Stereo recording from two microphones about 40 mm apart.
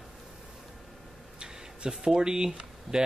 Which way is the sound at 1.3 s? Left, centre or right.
Centre.